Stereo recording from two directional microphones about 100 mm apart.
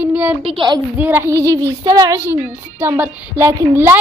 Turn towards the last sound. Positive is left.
turn(degrees=-30)  # may be behind; listen again after turning